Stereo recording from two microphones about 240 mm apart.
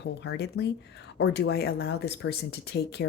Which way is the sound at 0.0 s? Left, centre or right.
Left.